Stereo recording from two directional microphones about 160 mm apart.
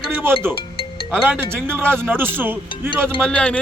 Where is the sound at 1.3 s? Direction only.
15° right (ahead or behind).